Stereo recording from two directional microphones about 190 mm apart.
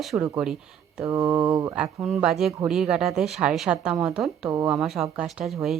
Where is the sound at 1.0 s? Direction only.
15° right (ahead or behind).